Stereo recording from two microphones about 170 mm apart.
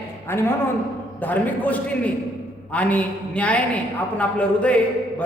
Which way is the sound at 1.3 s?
10° left (ahead or behind).